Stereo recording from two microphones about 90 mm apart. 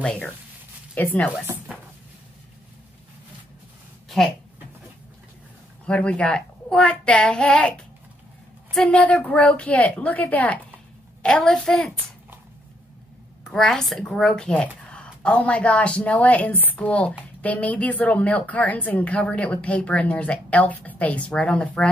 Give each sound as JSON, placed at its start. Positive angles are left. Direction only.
{"t": 0.9, "sound": "speech", "side_deg": 20}
{"t": 5.9, "sound": "a woman's voice", "side_deg": 15}
{"t": 8.8, "sound": "a woman's voice", "side_deg": 15}
{"t": 13.4, "sound": "a woman's voice", "side_deg": 5}